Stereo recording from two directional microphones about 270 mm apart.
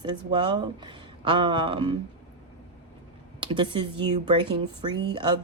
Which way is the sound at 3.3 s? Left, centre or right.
Centre.